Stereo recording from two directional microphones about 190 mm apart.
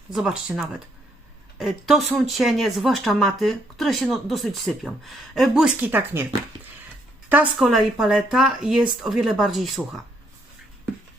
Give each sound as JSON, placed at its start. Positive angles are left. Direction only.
{"t": 0.1, "sound": "speech", "side_deg": 0}
{"t": 7.3, "sound": "speech", "side_deg": -5}